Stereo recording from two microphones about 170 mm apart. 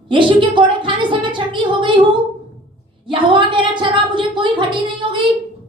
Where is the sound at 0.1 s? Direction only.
30° right (ahead or behind).